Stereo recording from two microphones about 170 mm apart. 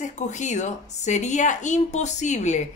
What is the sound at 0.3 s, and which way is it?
Speech, 45° left (ahead or behind).